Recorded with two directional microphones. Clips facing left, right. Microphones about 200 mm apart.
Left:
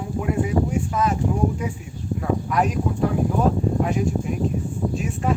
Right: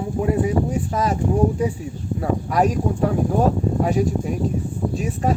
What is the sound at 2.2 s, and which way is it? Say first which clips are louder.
Speech: right 3 dB; 40° right (ahead or behind).